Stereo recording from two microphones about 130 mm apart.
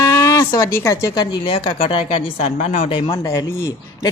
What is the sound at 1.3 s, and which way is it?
A woman's voice, 40° left (ahead or behind).